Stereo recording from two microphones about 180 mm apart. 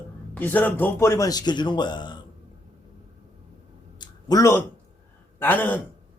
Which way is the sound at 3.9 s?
20° left (ahead or behind).